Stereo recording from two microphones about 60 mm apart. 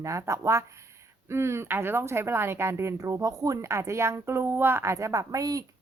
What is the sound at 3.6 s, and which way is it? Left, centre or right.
A woman's voice, right.